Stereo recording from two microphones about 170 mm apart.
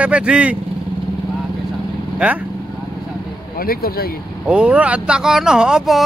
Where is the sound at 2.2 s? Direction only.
5° right (ahead or behind).